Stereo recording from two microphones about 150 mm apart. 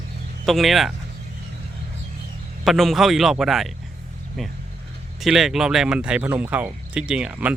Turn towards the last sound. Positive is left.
turn(degrees=-5)  # may be behind; listen again after turning